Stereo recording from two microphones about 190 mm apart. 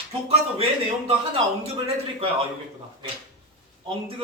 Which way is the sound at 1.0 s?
30° right (ahead or behind).